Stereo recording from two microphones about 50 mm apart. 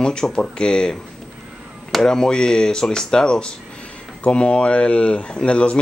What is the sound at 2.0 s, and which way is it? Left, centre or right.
Speech, centre.